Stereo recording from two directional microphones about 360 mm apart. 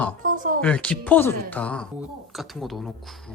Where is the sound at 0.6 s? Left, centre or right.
Centre.